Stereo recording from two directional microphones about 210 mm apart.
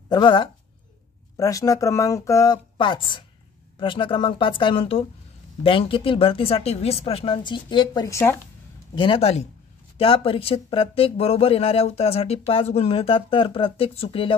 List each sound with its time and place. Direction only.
0.1 s speech: 20° left (ahead or behind)
8.9 s speech: 25° left (ahead or behind)